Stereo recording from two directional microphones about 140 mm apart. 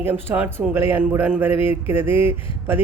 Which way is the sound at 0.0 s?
15° right (ahead or behind).